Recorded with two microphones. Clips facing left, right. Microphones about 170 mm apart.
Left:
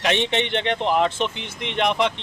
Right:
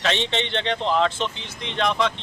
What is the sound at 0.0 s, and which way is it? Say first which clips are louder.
A man's voice: left 2 dB; 15° left (ahead or behind).